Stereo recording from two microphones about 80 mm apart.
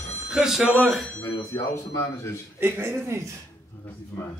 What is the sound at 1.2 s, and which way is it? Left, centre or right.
Speech, left.